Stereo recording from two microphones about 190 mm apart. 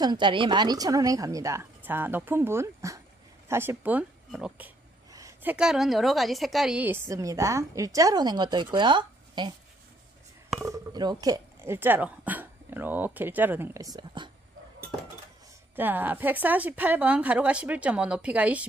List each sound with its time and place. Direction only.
0.0 s a woman's voice: 25° right (ahead or behind)
10.6 s speech: 20° right (ahead or behind)
15.7 s speech: 10° right (ahead or behind)